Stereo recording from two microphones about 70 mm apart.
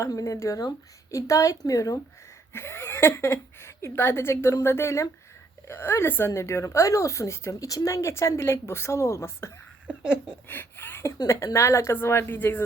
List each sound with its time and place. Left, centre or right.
0.1 s a woman's voice: left
2.5 s a woman's voice: left
9.8 s speech: centre
10.5 s speech: left